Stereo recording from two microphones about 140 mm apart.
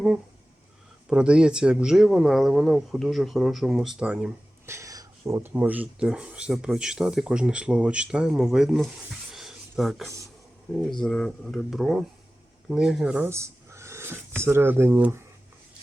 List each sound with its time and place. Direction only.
1.1 s speech: 5° right (ahead or behind)
4.6 s speech: 20° right (ahead or behind); by 8.9 s 5° right (ahead or behind)
9.3 s a sound: centre (ahead or behind)
10.8 s speech: 5° left (ahead or behind); by 15.2 s 15° right (ahead or behind)